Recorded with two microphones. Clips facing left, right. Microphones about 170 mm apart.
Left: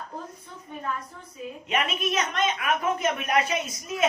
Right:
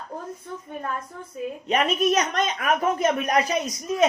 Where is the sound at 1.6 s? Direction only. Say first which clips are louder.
Right 6 dB; 35° right (ahead or behind).